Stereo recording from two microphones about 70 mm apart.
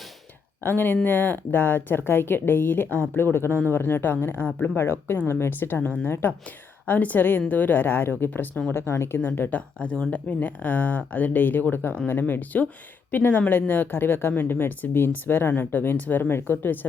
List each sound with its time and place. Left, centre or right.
0.6 s speech: left